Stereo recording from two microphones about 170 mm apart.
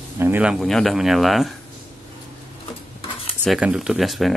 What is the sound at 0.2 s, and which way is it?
Speech, 10° right (ahead or behind).